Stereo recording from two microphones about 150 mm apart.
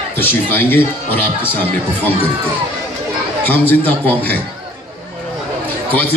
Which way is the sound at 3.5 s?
10° left (ahead or behind).